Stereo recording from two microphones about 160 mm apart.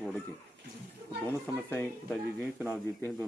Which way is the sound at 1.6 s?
15° left (ahead or behind).